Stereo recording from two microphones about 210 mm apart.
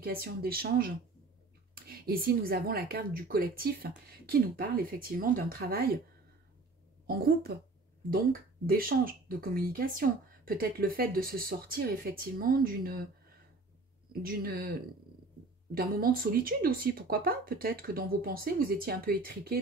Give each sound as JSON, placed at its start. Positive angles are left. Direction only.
{"t": 0.0, "sound": "speech", "side_deg": -45}
{"t": 7.1, "sound": "speech", "side_deg": -45}
{"t": 14.2, "sound": "speech", "side_deg": -45}